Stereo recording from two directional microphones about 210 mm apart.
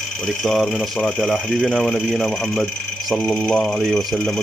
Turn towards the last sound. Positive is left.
turn(degrees=0)  # may be behind; listen again after turning